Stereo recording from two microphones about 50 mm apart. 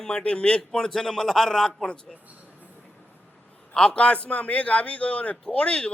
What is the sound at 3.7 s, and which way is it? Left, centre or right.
A man's voice, centre.